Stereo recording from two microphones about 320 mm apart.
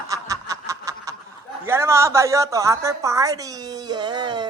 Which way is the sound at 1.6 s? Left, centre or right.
Centre.